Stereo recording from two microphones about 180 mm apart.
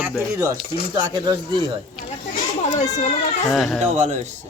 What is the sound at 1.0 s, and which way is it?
Speech, 25° right (ahead or behind).